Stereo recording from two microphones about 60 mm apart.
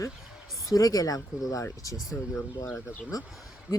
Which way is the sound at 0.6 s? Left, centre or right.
Left.